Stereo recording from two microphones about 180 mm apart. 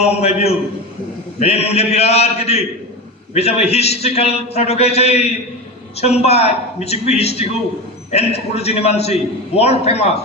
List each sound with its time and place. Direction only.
0.0 s a man's voice: 35° left (ahead or behind)